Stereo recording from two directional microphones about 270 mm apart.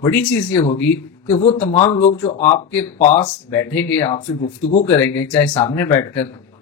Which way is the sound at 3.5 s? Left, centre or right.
Centre.